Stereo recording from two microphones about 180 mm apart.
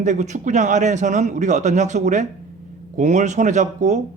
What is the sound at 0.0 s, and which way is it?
A man's voice, 40° right (ahead or behind).